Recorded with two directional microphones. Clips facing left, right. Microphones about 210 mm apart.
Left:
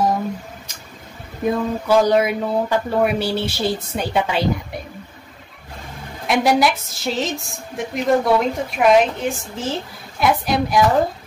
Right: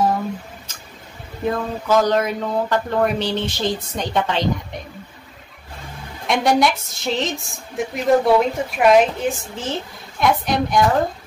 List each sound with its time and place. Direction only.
1.4 s speech: 10° left (ahead or behind)
6.2 s a woman's voice: centre (ahead or behind)